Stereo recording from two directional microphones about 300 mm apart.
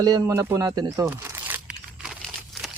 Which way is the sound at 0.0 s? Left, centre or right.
Centre.